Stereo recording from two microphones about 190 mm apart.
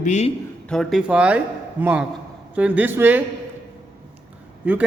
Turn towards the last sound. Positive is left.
turn(degrees=-10)  # may be behind; listen again after turning